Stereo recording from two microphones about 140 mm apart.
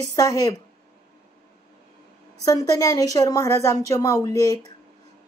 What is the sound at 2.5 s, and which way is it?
Speech, 25° left (ahead or behind).